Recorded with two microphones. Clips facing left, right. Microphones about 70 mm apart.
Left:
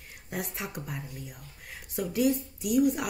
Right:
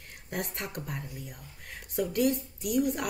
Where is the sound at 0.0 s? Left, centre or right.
Centre.